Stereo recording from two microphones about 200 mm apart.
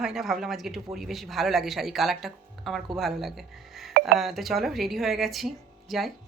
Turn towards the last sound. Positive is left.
turn(degrees=0)  # may be behind; listen again after turning